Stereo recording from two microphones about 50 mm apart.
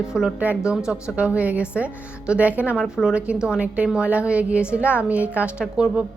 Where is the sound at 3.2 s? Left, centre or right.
Right.